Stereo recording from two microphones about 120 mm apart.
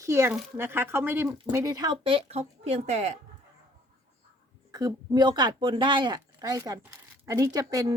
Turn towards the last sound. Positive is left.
turn(degrees=-30)  # may be behind; listen again after turning